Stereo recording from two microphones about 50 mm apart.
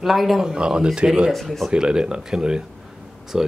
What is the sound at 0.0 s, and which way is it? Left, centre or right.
Speech, centre.